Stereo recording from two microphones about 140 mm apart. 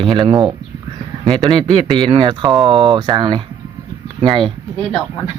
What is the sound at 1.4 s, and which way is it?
Speech, 25° right (ahead or behind).